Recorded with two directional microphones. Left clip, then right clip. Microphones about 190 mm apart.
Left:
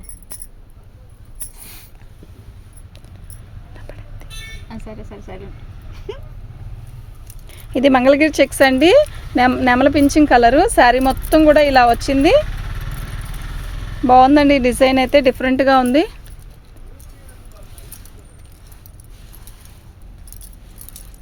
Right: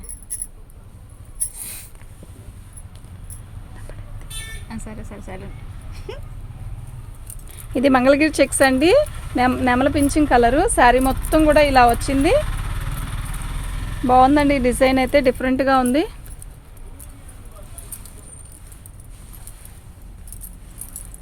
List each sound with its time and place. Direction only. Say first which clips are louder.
4.7 s speech: left 1 dB; 10° right (ahead or behind)
7.5 s speech: left 3 dB; 30° left (ahead or behind); by 12.4 s 50° left (ahead or behind)
14.1 s speech: left 4 dB; 50° left (ahead or behind)